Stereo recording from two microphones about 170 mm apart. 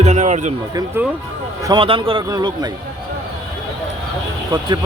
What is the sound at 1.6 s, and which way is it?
Speech, 30° right (ahead or behind).